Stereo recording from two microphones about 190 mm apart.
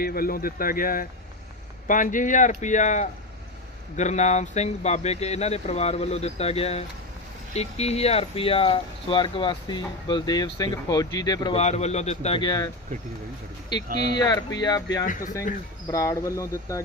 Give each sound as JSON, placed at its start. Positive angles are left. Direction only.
{"t": 0.0, "sound": "speech", "side_deg": 50}
{"t": 11.5, "sound": "speech", "side_deg": 35}
{"t": 14.2, "sound": "speech", "side_deg": 20}
{"t": 15.0, "sound": "speech", "side_deg": 45}
{"t": 15.9, "sound": "speech", "side_deg": 15}